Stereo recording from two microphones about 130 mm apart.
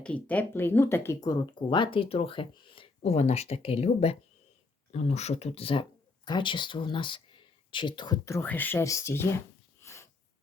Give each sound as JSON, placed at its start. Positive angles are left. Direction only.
{"t": 0.0, "sound": "speech", "side_deg": 10}
{"t": 9.8, "sound": "wheeze", "side_deg": 20}